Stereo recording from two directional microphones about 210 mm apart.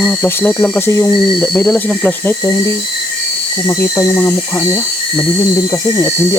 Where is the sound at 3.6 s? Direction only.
15° left (ahead or behind).